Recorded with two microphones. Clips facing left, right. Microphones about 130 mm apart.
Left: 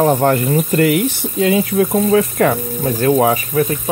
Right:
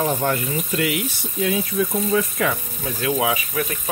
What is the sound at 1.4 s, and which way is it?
Speech, 70° left (ahead or behind).